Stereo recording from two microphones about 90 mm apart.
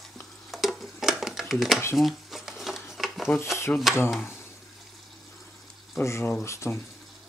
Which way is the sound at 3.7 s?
20° left (ahead or behind).